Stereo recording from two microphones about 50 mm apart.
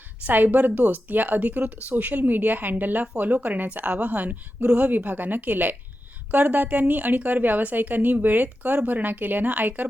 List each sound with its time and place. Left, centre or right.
0.3 s a woman's voice: right